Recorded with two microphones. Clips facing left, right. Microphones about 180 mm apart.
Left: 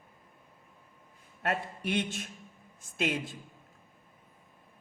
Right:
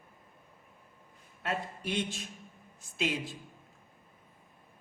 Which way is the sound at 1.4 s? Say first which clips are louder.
Left 3 dB; 55° left (ahead or behind).